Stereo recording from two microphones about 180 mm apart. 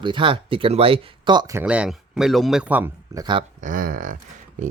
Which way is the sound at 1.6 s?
5° right (ahead or behind).